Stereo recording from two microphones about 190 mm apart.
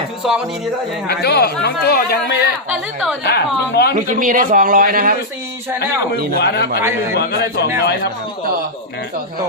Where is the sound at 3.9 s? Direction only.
45° right (ahead or behind).